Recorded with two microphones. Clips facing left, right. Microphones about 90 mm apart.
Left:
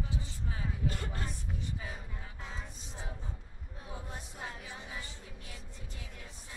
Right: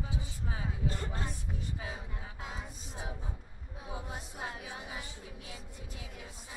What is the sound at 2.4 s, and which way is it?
Music, 10° right (ahead or behind).